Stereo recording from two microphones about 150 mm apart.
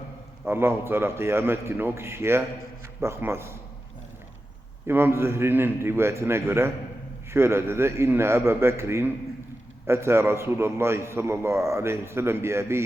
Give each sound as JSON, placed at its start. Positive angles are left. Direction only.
{"t": 0.4, "sound": "a man's voice", "side_deg": -15}
{"t": 4.9, "sound": "a man's voice", "side_deg": -15}